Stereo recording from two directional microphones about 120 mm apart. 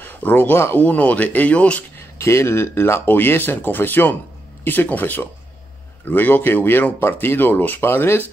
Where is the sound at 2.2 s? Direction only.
25° left (ahead or behind).